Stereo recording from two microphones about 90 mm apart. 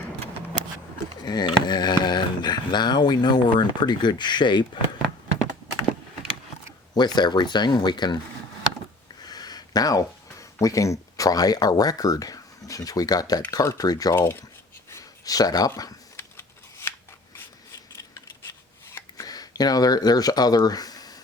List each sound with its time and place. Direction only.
1.2 s speech: 50° left (ahead or behind)
6.7 s speech: 55° left (ahead or behind)
9.2 s speech: 50° left (ahead or behind)
14.2 s speech: 25° left (ahead or behind)
14.8 s a sound: 35° left (ahead or behind)
16.1 s scissors: 25° left (ahead or behind)
18.9 s a sound: 40° left (ahead or behind)